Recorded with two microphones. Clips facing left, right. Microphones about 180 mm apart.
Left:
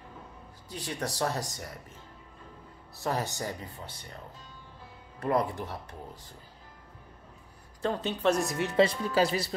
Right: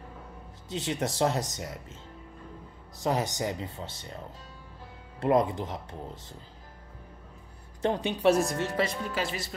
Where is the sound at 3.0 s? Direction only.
15° right (ahead or behind).